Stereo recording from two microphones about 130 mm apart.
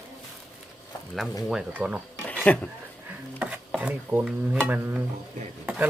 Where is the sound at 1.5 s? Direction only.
5° right (ahead or behind).